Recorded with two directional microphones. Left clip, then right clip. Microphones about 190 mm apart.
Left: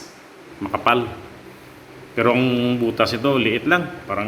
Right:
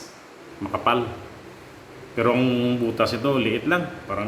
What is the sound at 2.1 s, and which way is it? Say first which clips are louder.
Speech: left 3 dB; centre (ahead or behind).